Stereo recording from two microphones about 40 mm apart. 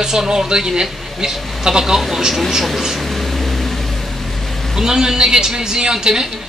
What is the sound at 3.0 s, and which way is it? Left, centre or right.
Vehicle, centre.